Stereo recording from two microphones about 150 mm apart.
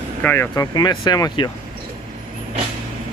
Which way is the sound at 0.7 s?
30° left (ahead or behind).